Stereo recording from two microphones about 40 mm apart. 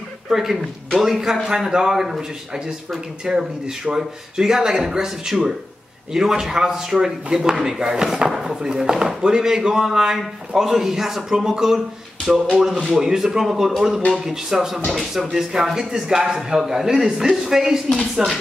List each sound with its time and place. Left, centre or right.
0.3 s speech: centre
1.7 s speech: centre
8.3 s a sound: centre
8.5 s speech: centre
14.9 s speech: centre
15.3 s speech: centre
17.9 s speech: centre